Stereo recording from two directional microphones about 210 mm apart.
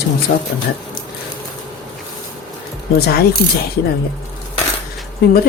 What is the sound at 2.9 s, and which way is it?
Speech, 50° left (ahead or behind).